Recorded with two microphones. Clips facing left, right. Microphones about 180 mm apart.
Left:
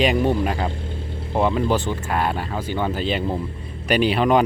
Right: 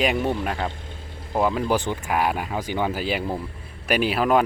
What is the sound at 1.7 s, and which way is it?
Speech, 15° right (ahead or behind).